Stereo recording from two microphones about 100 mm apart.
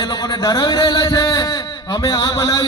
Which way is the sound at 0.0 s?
40° left (ahead or behind).